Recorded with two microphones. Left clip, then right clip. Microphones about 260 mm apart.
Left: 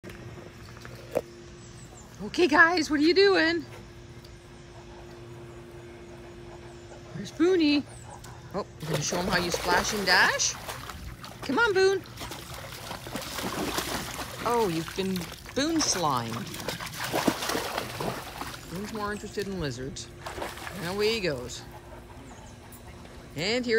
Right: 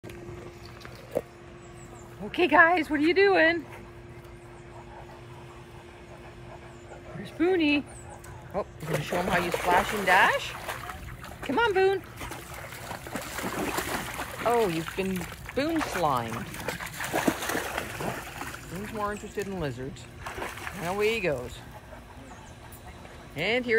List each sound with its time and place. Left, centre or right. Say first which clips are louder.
2.3 s speech: right 1 dB; centre
7.3 s speech: left 1 dB; centre
9.1 s boat: right 2 dB; centre
13.8 s speech: right 1 dB; centre
16.5 s dog: even; centre; by 18.9 s left
18.9 s speech: right 1 dB; centre
20.2 s rowboat: right 1 dB; left
20.8 s speech: right 1 dB; centre
23.3 s speech: right 1 dB; centre